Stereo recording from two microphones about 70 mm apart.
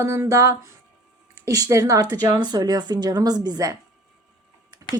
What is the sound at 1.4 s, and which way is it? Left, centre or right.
Speech, right.